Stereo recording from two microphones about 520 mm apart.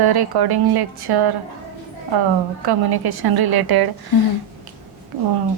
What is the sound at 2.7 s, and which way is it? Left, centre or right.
A woman's voice, right.